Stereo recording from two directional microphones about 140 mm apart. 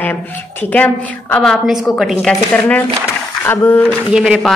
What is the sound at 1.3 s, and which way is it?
Speech, 5° left (ahead or behind).